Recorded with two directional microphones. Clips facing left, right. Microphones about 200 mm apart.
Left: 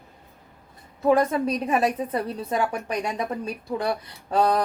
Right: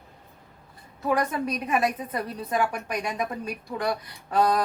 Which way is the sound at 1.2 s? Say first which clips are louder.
Left 4 dB; 30° left (ahead or behind).